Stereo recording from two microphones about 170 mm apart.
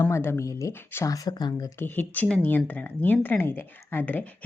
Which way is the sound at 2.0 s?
10° left (ahead or behind).